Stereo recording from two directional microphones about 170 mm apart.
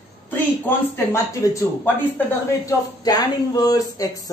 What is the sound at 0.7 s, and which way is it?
A man's voice, 15° left (ahead or behind).